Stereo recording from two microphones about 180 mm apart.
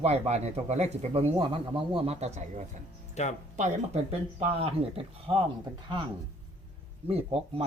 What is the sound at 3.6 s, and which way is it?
Speech, 35° right (ahead or behind).